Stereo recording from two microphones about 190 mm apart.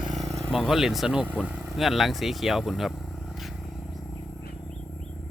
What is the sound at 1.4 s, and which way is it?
Vehicle, 5° right (ahead or behind).